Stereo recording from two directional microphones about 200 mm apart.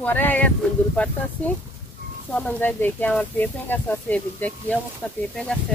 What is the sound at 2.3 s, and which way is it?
Speech, 5° left (ahead or behind).